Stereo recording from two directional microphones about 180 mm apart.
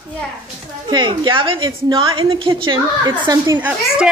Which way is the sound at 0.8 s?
25° right (ahead or behind).